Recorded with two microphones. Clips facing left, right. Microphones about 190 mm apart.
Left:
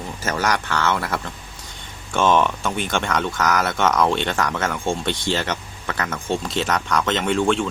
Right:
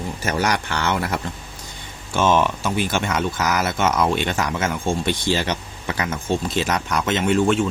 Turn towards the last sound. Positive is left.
turn(degrees=-5)  # may be behind; listen again after turning